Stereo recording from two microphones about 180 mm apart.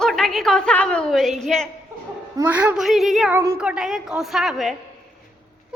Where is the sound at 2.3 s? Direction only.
10° right (ahead or behind).